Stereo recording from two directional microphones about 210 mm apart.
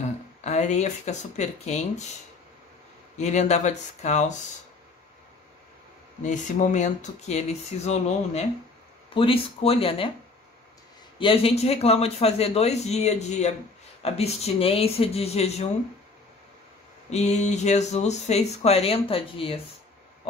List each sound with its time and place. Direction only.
0.0 s speech: 35° left (ahead or behind)
3.2 s speech: 35° left (ahead or behind)
6.2 s a man's voice: 35° left (ahead or behind)
11.1 s a man's voice: 25° left (ahead or behind)
17.1 s speech: 30° left (ahead or behind)